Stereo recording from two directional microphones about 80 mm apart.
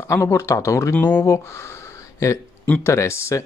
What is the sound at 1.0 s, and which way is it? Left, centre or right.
Speech, left.